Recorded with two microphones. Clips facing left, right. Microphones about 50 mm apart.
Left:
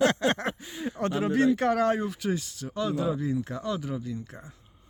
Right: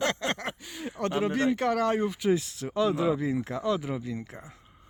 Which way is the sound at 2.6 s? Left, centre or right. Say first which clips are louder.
Right 3 dB; right.